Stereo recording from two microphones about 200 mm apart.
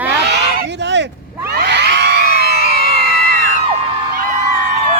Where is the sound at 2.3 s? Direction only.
55° right (ahead or behind).